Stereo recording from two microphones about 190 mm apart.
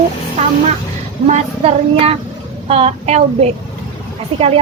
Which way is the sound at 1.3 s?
30° right (ahead or behind).